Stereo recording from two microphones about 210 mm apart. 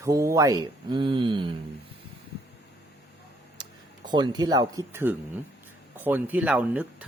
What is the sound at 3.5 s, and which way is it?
Speech, 20° right (ahead or behind).